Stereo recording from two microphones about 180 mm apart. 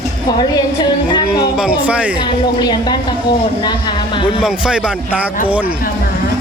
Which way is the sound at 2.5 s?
25° left (ahead or behind).